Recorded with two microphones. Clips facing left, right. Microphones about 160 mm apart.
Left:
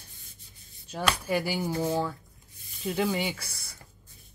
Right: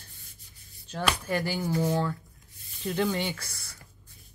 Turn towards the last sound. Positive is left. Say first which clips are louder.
# even
turn(degrees=10)  # may be behind; listen again after turning